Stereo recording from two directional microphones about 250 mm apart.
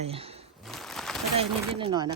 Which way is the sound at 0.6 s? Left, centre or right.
Centre.